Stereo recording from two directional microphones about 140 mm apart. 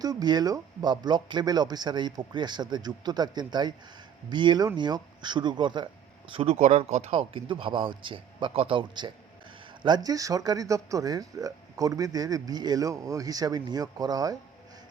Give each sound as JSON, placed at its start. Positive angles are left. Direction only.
{"t": 0.0, "sound": "speech", "side_deg": -30}
{"t": 6.6, "sound": "speech", "side_deg": -55}